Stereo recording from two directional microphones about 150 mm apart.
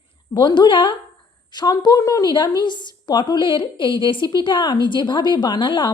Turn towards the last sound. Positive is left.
turn(degrees=30)  # may be behind; listen again after turning